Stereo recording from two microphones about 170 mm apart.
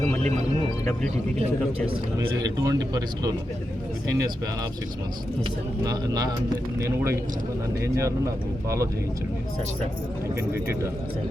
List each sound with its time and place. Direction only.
2.4 s speech: 20° right (ahead or behind)
5.8 s speech: 20° right (ahead or behind)